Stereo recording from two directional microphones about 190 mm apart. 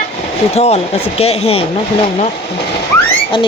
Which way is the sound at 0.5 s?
35° left (ahead or behind).